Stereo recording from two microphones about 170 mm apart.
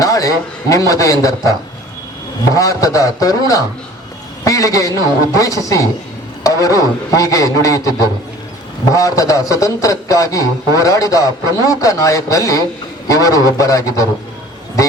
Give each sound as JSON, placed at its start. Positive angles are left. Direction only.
{"t": 0.0, "sound": "a man's voice", "side_deg": 20}